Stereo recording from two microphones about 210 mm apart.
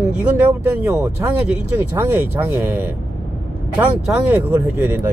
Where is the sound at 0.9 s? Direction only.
10° right (ahead or behind).